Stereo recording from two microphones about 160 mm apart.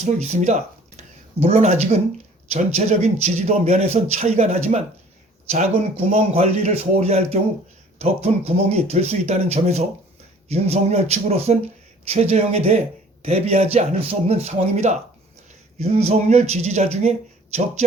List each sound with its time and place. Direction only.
0.0 s speech: 45° right (ahead or behind)